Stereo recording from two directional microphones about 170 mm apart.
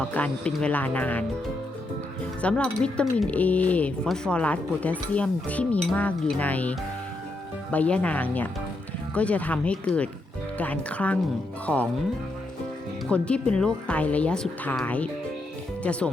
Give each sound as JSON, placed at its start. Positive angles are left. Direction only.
{"t": 0.0, "sound": "speech", "side_deg": 5}
{"t": 2.4, "sound": "speech", "side_deg": 5}
{"t": 13.1, "sound": "speech", "side_deg": 5}